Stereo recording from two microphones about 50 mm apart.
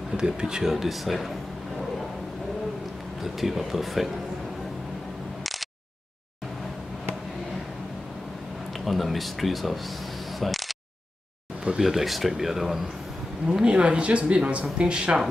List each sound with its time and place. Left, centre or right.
0.2 s speech: centre
3.3 s speech: centre
8.8 s speech: centre
11.6 s speech: centre
13.5 s speech: centre